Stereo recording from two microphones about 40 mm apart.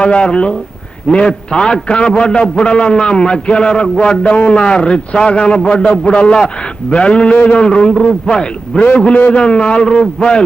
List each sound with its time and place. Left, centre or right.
0.0 s a man's voice: left
4.3 s a man's voice: left